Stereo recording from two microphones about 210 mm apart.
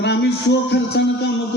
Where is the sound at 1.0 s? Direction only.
60° left (ahead or behind).